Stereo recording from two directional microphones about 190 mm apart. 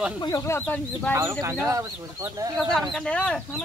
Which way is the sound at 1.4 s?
15° right (ahead or behind).